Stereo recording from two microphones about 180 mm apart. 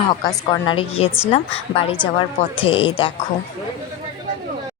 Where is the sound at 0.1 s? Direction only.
25° left (ahead or behind).